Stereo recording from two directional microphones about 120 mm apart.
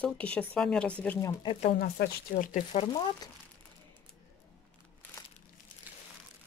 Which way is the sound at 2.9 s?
35° left (ahead or behind).